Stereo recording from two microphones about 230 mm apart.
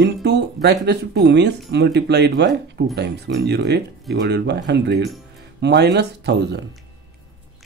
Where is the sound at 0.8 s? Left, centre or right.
Right.